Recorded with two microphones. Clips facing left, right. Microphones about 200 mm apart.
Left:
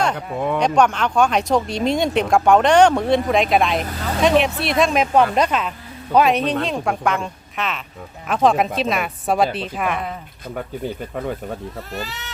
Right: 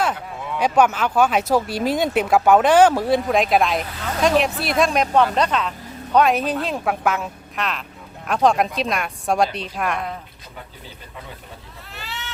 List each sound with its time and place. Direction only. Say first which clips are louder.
0.3 s speech: left 8 dB; 55° left (ahead or behind)
0.6 s speech: right 1 dB; 5° right (ahead or behind)
10.5 s speech: left 15 dB; 55° left (ahead or behind)
11.9 s speech: left 2 dB; 40° left (ahead or behind)